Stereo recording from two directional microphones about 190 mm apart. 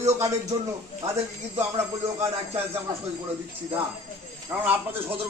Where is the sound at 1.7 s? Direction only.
15° right (ahead or behind).